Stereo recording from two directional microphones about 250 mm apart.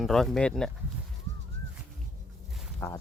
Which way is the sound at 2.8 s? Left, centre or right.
Centre.